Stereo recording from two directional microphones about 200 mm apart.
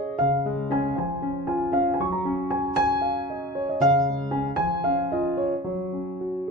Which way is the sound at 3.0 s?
20° right (ahead or behind).